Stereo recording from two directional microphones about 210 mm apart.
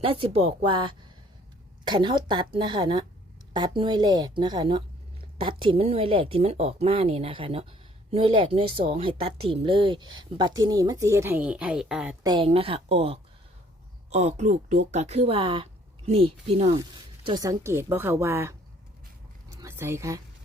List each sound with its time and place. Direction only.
0.0 s a woman's voice: 25° right (ahead or behind); by 12.1 s 5° right (ahead or behind)
12.2 s speech: 20° right (ahead or behind)
19.5 s a sound: 15° right (ahead or behind)